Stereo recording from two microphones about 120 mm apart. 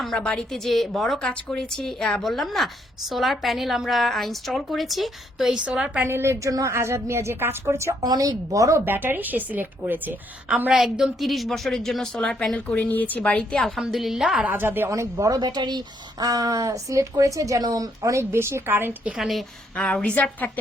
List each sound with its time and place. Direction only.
0.0 s a woman's voice: 5° left (ahead or behind); by 10.2 s 15° right (ahead or behind)
10.7 s speech: 5° right (ahead or behind)
14.4 s a woman's voice: 15° right (ahead or behind)
19.1 s a woman's voice: centre (ahead or behind)